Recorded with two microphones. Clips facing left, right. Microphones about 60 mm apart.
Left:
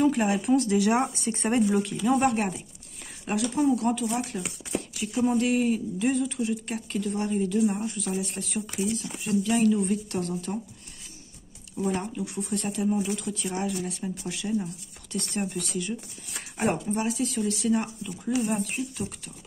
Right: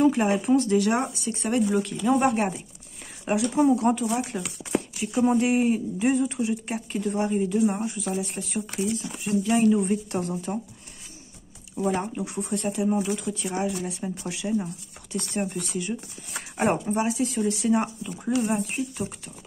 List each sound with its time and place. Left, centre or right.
0.0 s speech: centre
1.1 s speech: left
1.7 s speech: centre
3.3 s speech: centre
9.4 s speech: right
11.7 s speech: right
12.5 s speech: centre